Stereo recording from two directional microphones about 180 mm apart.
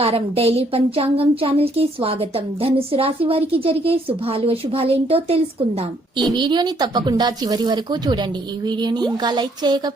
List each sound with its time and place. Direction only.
0.0 s a woman's voice: 30° right (ahead or behind)